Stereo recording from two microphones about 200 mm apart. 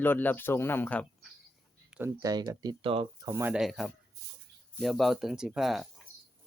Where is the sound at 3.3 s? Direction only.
15° right (ahead or behind).